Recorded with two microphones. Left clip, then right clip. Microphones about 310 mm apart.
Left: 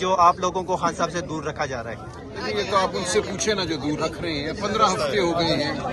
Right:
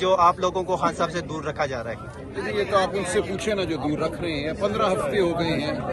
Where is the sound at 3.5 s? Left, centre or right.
Centre.